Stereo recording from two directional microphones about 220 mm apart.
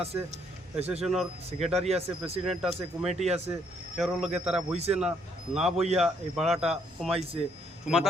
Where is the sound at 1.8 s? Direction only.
30° right (ahead or behind).